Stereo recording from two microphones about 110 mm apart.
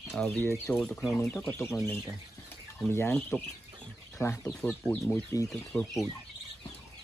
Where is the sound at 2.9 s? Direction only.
20° left (ahead or behind).